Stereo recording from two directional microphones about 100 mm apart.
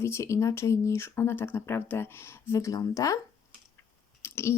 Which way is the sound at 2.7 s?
35° left (ahead or behind).